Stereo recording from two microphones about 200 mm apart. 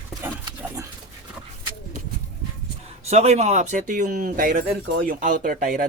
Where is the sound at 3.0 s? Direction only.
30° right (ahead or behind).